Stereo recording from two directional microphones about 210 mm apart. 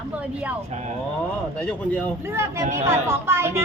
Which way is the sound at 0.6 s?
30° right (ahead or behind).